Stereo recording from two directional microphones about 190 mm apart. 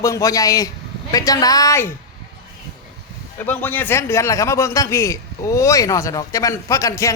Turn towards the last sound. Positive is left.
turn(degrees=15)  # may be behind; listen again after turning